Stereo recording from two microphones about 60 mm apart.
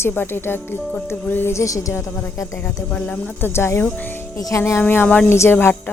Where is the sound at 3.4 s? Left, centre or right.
Left.